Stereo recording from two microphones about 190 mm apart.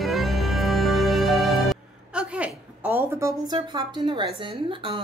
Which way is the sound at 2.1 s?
5° right (ahead or behind).